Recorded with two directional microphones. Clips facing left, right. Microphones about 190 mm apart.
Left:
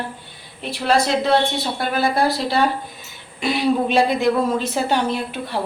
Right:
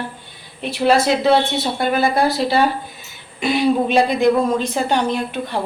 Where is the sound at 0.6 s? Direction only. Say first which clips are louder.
Right 3 dB; centre (ahead or behind).